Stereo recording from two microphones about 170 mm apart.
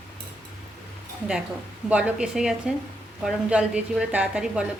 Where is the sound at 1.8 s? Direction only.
10° right (ahead or behind).